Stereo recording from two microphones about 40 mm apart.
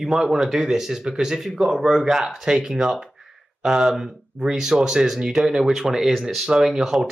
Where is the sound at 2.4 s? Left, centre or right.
Centre.